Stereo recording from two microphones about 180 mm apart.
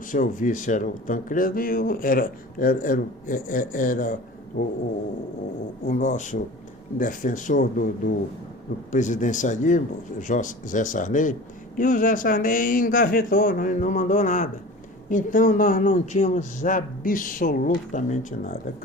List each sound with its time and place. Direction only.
0.1 s speech: 45° left (ahead or behind)
5.8 s speech: 45° left (ahead or behind)